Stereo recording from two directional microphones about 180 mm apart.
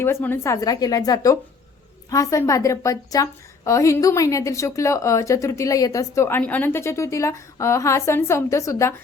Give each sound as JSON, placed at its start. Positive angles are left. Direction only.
{"t": 0.0, "sound": "a woman's voice", "side_deg": 10}